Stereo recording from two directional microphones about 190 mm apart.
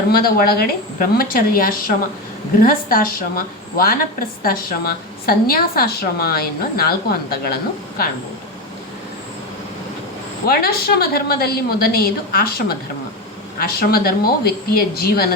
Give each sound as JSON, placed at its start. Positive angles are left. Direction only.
{"t": 0.1, "sound": "a woman's voice", "side_deg": 50}
{"t": 10.4, "sound": "a woman's voice", "side_deg": 55}